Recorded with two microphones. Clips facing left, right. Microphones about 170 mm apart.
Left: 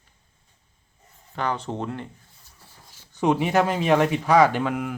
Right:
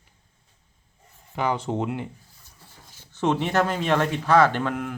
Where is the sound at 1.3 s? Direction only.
10° right (ahead or behind).